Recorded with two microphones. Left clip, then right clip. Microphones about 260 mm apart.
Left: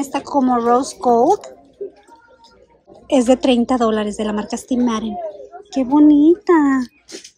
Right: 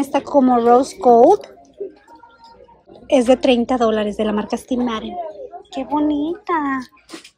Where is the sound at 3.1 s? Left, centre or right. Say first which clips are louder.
Right 1 dB; centre.